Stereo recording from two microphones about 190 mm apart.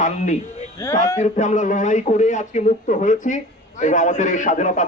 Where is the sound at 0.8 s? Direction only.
15° left (ahead or behind).